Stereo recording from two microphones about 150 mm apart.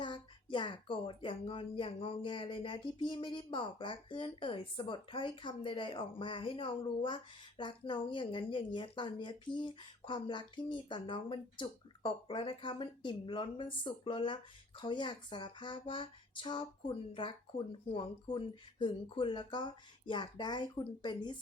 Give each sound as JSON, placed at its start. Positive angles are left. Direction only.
{"t": 0.0, "sound": "speech", "side_deg": 30}